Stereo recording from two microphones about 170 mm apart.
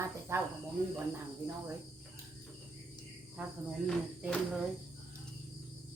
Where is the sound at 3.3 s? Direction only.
5° right (ahead or behind).